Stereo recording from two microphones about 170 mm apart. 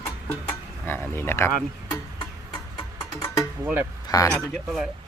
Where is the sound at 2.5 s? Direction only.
20° left (ahead or behind).